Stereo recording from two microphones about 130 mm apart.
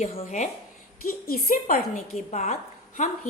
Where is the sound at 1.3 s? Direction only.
90° left.